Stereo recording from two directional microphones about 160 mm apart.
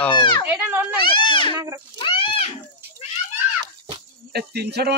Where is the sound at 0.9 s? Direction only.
30° left (ahead or behind).